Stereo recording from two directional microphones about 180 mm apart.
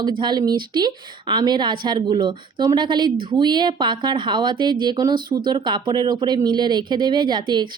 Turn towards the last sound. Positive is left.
turn(degrees=-25)  # may be behind; listen again after turning